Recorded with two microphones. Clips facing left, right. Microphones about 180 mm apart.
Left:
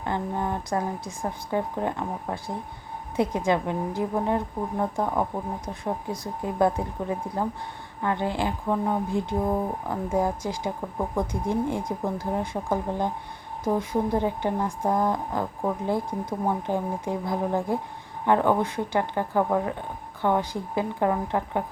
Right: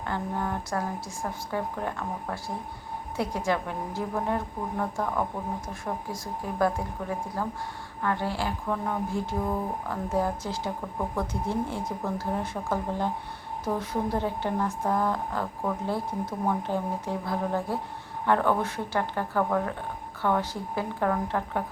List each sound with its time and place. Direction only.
0.0 s speech: 20° left (ahead or behind)